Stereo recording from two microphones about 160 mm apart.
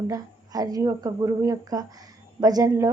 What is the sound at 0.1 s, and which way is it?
Speech, 25° right (ahead or behind).